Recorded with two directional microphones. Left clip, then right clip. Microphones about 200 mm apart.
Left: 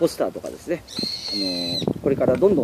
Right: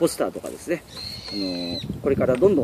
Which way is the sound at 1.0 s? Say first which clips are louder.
Left 5 dB; 45° left (ahead or behind).